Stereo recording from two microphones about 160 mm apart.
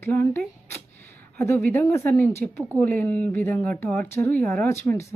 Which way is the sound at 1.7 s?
15° left (ahead or behind).